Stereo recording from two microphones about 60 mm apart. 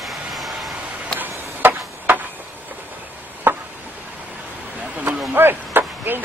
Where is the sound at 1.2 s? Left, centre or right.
Right.